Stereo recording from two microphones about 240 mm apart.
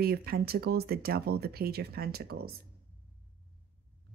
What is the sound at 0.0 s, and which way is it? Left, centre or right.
Speech, right.